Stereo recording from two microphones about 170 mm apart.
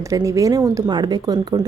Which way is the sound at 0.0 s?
20° right (ahead or behind).